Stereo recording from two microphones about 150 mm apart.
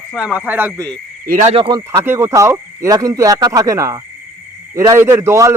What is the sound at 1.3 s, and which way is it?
Speech, 50° right (ahead or behind).